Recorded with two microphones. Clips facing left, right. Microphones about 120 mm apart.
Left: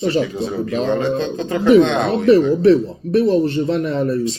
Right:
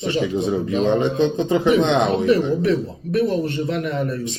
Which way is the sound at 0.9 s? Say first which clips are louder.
Right 1 dB; 15° right (ahead or behind).